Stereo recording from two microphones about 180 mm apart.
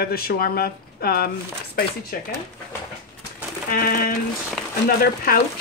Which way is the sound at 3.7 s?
55° left (ahead or behind).